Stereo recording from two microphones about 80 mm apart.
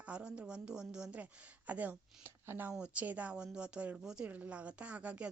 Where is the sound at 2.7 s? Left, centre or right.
Centre.